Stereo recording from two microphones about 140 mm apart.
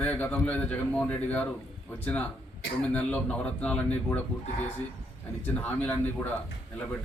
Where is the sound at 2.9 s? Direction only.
10° left (ahead or behind).